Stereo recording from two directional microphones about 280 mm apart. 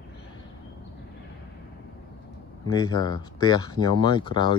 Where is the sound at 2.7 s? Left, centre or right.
Centre.